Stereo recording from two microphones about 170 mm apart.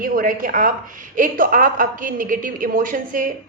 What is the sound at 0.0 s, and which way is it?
A woman's voice, 55° right (ahead or behind).